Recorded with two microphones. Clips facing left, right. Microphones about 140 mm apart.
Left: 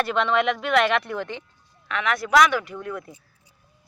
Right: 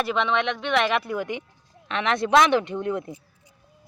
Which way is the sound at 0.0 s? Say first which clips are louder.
Left 2 dB; centre (ahead or behind).